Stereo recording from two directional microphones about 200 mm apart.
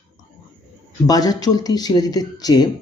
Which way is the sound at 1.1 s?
20° left (ahead or behind).